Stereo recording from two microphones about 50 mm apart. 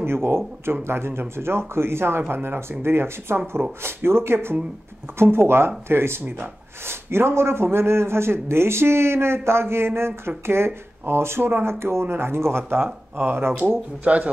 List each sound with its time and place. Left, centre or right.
0.0 s a man's voice: right
14.0 s speech: right